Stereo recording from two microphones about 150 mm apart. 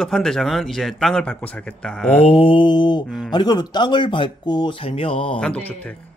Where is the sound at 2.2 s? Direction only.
35° left (ahead or behind).